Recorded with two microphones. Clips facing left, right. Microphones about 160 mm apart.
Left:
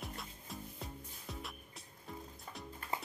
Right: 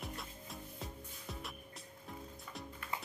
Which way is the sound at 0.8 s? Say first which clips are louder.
Even; centre (ahead or behind).